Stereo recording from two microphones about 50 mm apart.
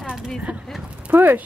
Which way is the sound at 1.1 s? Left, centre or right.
Right.